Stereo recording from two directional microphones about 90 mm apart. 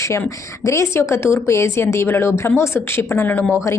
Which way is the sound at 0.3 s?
35° left (ahead or behind).